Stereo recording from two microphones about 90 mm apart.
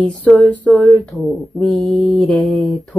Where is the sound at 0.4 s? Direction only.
15° left (ahead or behind).